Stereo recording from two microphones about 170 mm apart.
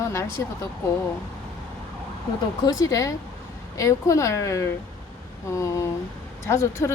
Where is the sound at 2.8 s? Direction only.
20° left (ahead or behind).